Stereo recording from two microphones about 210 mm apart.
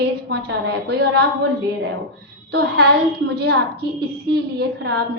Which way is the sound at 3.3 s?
50° right (ahead or behind).